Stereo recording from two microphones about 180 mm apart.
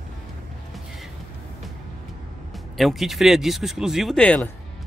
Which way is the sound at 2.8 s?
Centre (ahead or behind).